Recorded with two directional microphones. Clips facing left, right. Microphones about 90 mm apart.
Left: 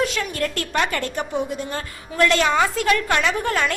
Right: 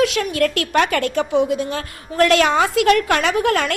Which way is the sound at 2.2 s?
65° right (ahead or behind).